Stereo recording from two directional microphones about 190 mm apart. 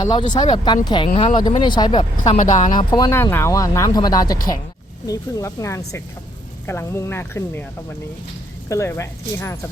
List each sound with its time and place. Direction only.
0.1 s speech: 25° left (ahead or behind)
1.4 s speech: 25° left (ahead or behind)
2.2 s speech: 40° left (ahead or behind)
2.7 s speech: 20° left (ahead or behind)
8.7 s speech: 15° left (ahead or behind)